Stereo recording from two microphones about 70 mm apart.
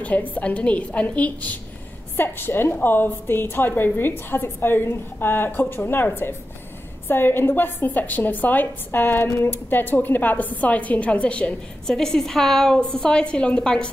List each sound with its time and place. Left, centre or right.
0.0 s a woman's voice: left